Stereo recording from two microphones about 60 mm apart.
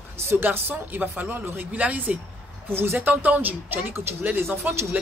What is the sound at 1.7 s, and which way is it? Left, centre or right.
Speech, right.